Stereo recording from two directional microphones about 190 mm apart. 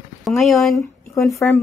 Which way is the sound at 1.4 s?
10° left (ahead or behind).